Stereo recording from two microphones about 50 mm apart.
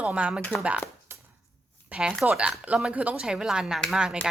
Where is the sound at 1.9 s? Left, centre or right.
Right.